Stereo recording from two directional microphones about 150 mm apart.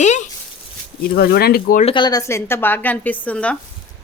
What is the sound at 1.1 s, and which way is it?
Speech, 90° left.